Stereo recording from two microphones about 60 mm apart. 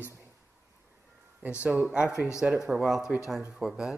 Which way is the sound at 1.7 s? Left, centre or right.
Centre.